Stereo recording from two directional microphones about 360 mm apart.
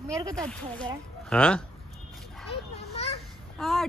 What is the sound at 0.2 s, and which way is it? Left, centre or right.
Speech, centre.